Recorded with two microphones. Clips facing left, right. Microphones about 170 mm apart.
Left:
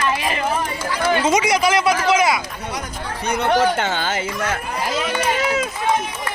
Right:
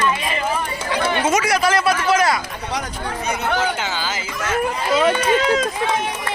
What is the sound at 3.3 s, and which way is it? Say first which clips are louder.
Speech: left 5 dB; 60° left (ahead or behind).